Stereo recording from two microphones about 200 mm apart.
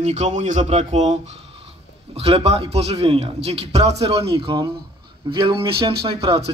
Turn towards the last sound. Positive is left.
turn(degrees=-30)  # may be behind; listen again after turning